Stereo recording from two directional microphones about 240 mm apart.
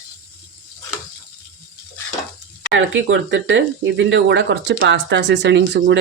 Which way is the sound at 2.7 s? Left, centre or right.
Right.